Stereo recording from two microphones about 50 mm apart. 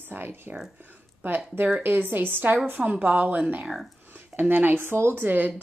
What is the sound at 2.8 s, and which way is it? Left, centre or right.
Speech, right.